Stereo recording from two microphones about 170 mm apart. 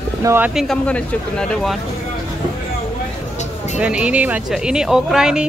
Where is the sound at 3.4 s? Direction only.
45° left (ahead or behind).